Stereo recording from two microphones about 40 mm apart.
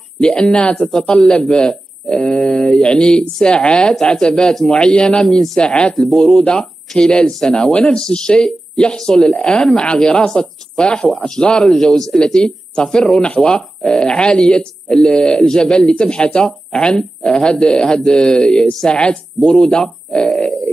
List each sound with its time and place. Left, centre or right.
0.2 s speech: left
15.9 s speech: left
19.5 s speech: centre